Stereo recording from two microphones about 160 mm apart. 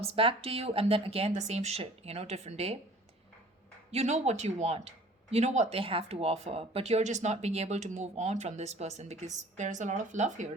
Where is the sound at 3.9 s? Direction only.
45° right (ahead or behind).